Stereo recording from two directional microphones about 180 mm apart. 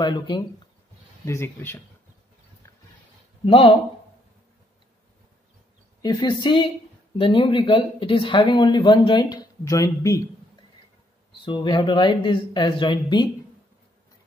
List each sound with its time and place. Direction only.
0.0 s speech: 25° left (ahead or behind)
3.4 s speech: 30° left (ahead or behind)
6.0 s speech: 25° left (ahead or behind)
11.4 s speech: 25° left (ahead or behind)